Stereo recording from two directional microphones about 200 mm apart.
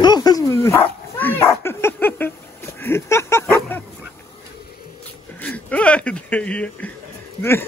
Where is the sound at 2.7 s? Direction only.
10° left (ahead or behind).